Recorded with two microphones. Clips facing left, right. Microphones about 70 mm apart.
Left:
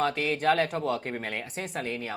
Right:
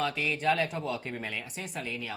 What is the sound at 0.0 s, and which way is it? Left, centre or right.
Speech, left.